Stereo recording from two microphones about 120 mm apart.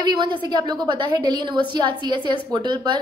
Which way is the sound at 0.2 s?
40° right (ahead or behind).